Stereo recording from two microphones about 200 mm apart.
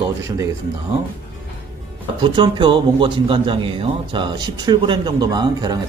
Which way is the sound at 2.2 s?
25° right (ahead or behind).